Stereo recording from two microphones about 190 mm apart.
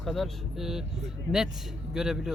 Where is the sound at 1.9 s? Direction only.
5° right (ahead or behind).